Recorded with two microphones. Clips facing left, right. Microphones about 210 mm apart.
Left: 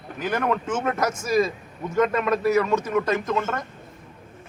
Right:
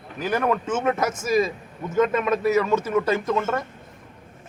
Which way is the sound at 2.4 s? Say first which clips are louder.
Left 1 dB; 25° right (ahead or behind).